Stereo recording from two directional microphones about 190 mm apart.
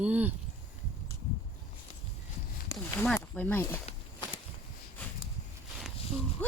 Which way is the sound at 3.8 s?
25° left (ahead or behind).